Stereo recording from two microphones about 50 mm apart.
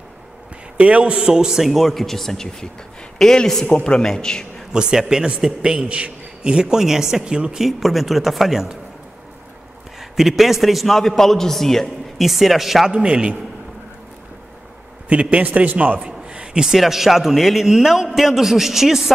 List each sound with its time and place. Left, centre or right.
0.7 s a man's voice: right; by 4.6 s centre
4.7 s a man's voice: centre
7.6 s a man's voice: centre
9.9 s a man's voice: centre
12.9 s a man's voice: centre
15.0 s a man's voice: right
16.0 s a sound: right
16.6 s a man's voice: centre